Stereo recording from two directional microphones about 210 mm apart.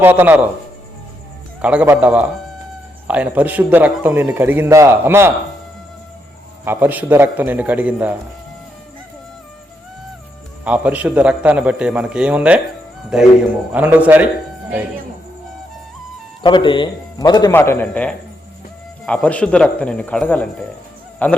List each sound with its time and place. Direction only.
0.0 s a man's voice: 10° right (ahead or behind)
1.6 s a man's voice: 5° right (ahead or behind)
6.7 s a man's voice: 10° right (ahead or behind)
10.6 s a man's voice: 5° right (ahead or behind)
16.4 s a man's voice: 20° left (ahead or behind)